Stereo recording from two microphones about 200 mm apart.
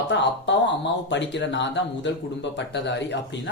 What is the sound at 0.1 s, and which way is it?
Speech, 60° left (ahead or behind).